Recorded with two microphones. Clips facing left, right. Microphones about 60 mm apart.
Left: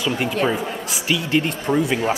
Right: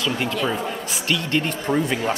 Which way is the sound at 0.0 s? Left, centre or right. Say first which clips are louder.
Left 2 dB; centre.